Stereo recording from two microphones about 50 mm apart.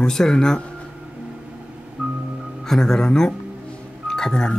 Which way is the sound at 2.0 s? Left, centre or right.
Right.